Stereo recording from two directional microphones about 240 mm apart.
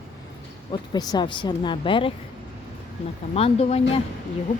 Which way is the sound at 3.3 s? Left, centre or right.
Left.